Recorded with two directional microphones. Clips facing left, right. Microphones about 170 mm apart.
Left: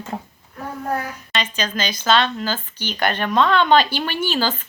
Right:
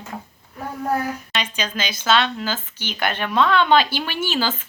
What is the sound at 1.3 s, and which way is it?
Speech, 10° right (ahead or behind).